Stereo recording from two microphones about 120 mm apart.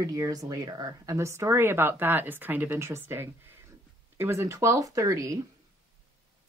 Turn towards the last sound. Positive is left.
turn(degrees=-25)  # may be behind; listen again after turning